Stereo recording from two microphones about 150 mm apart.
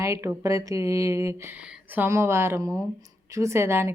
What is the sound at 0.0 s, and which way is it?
A woman's voice, 20° right (ahead or behind).